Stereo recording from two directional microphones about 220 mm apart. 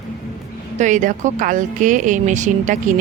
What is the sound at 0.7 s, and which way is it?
Speech, 35° right (ahead or behind).